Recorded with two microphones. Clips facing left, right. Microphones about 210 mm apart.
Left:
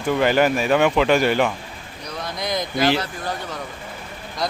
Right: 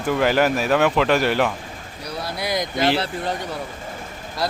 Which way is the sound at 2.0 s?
10° right (ahead or behind).